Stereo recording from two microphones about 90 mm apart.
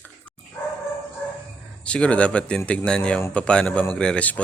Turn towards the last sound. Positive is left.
turn(degrees=15)  # may be behind; listen again after turning